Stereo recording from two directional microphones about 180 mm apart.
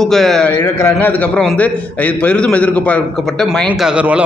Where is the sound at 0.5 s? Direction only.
15° left (ahead or behind).